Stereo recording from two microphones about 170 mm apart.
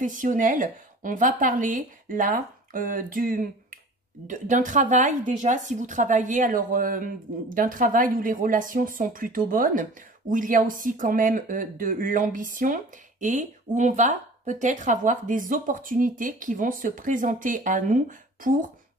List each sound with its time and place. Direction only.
0.0 s a woman's voice: 50° right (ahead or behind)